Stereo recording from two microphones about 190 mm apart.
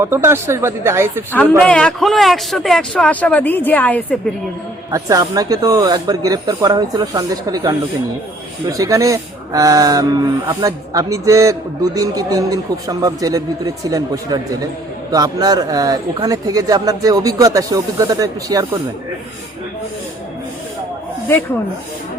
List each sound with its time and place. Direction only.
0.0 s speech: 15° right (ahead or behind)
1.3 s a man's voice: 5° left (ahead or behind)
4.9 s speech: 15° right (ahead or behind)
8.8 s speech: 15° right (ahead or behind)
15.1 s speech: 20° right (ahead or behind)